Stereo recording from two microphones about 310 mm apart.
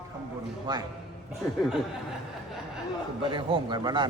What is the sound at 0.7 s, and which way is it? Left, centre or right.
Speech, centre.